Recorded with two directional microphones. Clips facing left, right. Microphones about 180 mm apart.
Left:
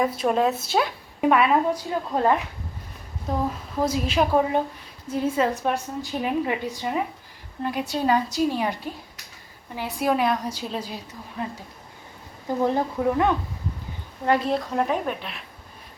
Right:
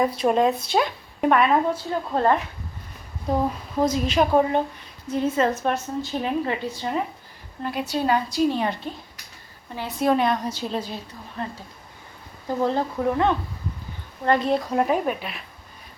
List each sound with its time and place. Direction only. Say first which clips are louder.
0.2 s a woman's voice: right 2 dB; centre (ahead or behind)
12.6 s a woman's voice: even; 15° left (ahead or behind)
14.3 s a woman's voice: right 1 dB; 5° left (ahead or behind)